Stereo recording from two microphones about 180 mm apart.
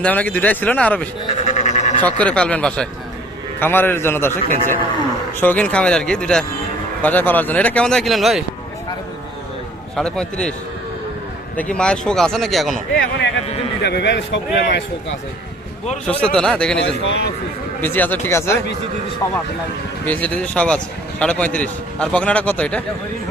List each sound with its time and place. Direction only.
0.0 s speech: 10° left (ahead or behind)
1.5 s a sound: 40° left (ahead or behind)
2.0 s speech: 10° left (ahead or behind)
4.4 s a man's voice: 45° right (ahead or behind)
5.4 s a man's voice: 10° left (ahead or behind)
9.9 s a man's voice: 5° left (ahead or behind)
11.5 s a man's voice: 5° left (ahead or behind)
13.0 s speech: 70° left (ahead or behind)
16.2 s a man's voice: 5° left (ahead or behind)
16.8 s a man's voice: 85° left
17.7 s speech: 10° left (ahead or behind)
20.1 s speech: 10° left (ahead or behind)